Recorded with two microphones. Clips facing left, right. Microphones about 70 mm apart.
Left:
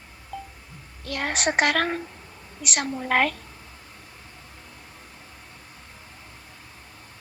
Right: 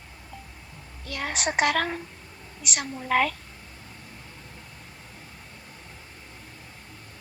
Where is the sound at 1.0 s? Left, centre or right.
Left.